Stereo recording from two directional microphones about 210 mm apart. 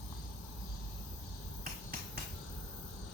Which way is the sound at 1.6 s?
40° right (ahead or behind).